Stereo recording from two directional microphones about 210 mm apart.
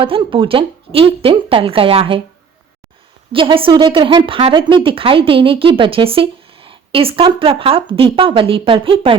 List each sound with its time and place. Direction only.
0.0 s a woman's voice: 25° right (ahead or behind)
3.3 s a woman's voice: 25° right (ahead or behind)